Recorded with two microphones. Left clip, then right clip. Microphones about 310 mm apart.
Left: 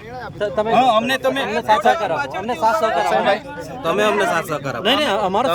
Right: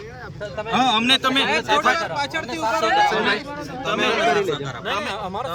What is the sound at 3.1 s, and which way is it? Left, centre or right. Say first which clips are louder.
Speech: left 4 dB; centre.